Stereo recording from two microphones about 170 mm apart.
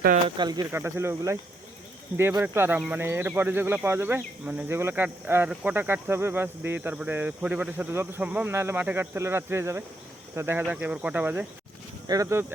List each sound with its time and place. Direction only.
0.3 s speech: 25° right (ahead or behind)
0.7 s speech: 15° right (ahead or behind)
12.0 s speech: 20° right (ahead or behind)